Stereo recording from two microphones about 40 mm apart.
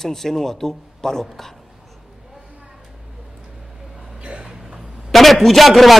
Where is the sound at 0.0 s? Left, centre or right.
Centre.